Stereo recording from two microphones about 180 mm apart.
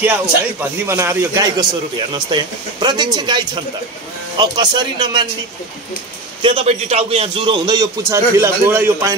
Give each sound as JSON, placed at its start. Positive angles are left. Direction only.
{"t": 0.6, "sound": "a man's voice", "side_deg": -15}
{"t": 6.4, "sound": "a man's voice", "side_deg": -35}